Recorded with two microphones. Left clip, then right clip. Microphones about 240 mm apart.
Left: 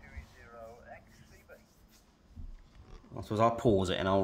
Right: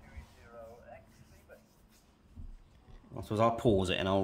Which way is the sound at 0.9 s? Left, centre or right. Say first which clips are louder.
Left 1 dB; centre.